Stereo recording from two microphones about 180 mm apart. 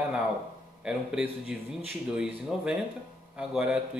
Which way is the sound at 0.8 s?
5° right (ahead or behind).